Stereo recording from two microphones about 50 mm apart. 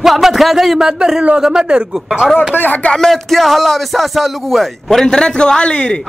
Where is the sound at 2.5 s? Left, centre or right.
Left.